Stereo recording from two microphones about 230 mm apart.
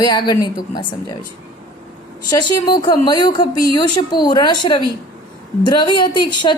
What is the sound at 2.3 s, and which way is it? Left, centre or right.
Speech, centre.